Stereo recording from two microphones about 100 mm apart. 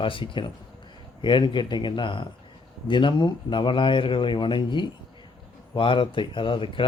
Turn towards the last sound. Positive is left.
turn(degrees=60)  # may be behind; listen again after turning